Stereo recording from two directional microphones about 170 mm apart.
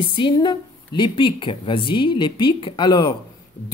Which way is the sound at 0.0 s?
30° left (ahead or behind).